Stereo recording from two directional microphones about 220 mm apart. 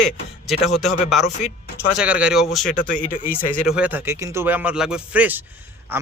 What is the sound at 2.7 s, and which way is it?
Speech, 40° left (ahead or behind).